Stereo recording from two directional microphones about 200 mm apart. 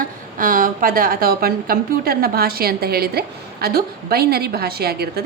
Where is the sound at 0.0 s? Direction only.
45° right (ahead or behind).